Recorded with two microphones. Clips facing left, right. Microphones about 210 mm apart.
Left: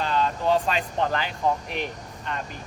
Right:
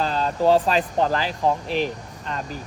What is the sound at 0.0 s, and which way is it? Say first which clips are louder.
Speech: right 4 dB; 35° right (ahead or behind).